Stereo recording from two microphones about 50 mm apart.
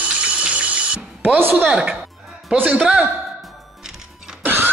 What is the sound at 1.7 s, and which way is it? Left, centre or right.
Speech, centre.